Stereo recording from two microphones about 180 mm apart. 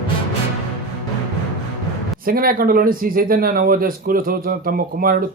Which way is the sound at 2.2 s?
55° right (ahead or behind).